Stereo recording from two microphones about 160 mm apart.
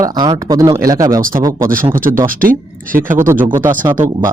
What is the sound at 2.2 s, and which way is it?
Speech, 60° right (ahead or behind).